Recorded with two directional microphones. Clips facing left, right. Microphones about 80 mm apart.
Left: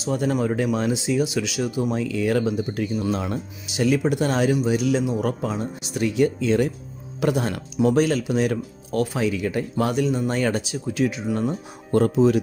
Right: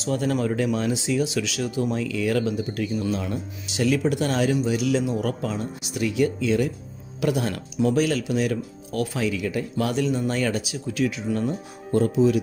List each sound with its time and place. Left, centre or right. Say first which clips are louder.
0.0 s speech: left 1 dB; centre
2.0 s speech: left 2 dB; left
3.7 s speech: left 1 dB; left
9.9 s speech: left 1 dB; centre
12.2 s speech: left 1 dB; left